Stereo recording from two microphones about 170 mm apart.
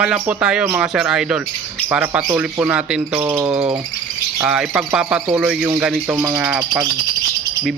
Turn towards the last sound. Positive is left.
turn(degrees=-5)  # may be behind; listen again after turning